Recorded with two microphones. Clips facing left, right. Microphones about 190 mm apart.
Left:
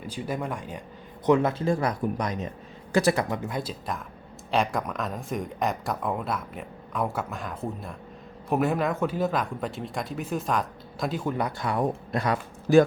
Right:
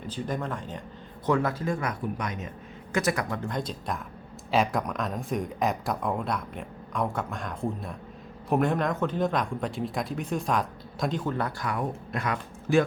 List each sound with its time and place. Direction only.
0.1 s speech: 10° left (ahead or behind)
3.5 s speech: 5° left (ahead or behind); by 12.8 s 35° left (ahead or behind)